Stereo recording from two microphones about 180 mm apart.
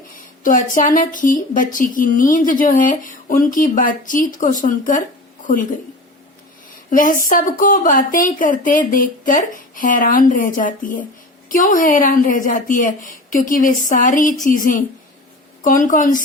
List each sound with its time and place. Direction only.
0.2 s speech: 50° left (ahead or behind)
6.9 s speech: 50° left (ahead or behind)